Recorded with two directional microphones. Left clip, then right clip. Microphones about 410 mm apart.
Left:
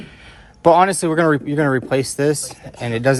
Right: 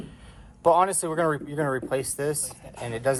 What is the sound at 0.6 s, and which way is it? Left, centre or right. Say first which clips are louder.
Speech: left 8 dB; left.